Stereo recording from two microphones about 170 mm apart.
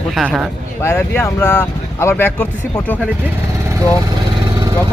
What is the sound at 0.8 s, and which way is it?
A man's voice, 15° left (ahead or behind).